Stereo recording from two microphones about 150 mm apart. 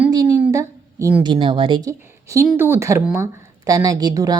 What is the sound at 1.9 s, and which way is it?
A woman's voice, 20° right (ahead or behind).